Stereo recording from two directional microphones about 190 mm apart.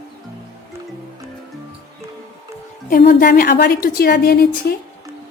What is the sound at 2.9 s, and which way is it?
A woman's voice, 50° left (ahead or behind).